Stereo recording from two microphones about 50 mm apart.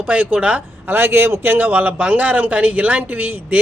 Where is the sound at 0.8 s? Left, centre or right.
Right.